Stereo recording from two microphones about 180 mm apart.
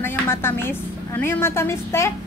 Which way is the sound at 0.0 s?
15° left (ahead or behind).